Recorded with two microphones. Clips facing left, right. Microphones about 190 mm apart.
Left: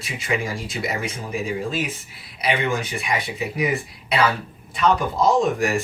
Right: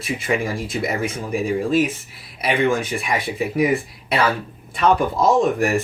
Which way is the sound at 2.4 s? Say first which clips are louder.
Right 4 dB; 55° right (ahead or behind).